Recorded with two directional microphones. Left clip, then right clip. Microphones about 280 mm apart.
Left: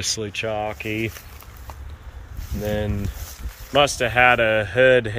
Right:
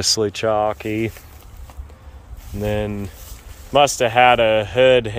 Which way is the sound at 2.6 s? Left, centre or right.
Centre.